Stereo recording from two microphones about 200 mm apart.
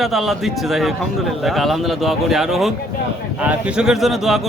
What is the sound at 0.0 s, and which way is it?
Speech, centre (ahead or behind).